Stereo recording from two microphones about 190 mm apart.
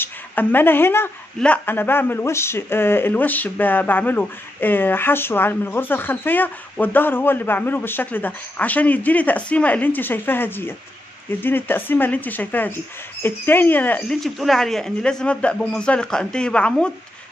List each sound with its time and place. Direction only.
0.0 s a woman's voice: 10° left (ahead or behind)